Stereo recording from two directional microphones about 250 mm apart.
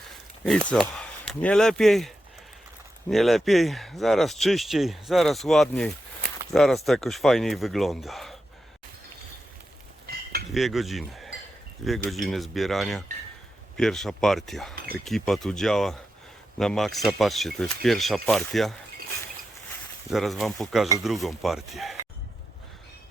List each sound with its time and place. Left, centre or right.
0.7 s speech: centre
10.1 s cutlery: right
10.5 s speech: centre
20.1 s speech: centre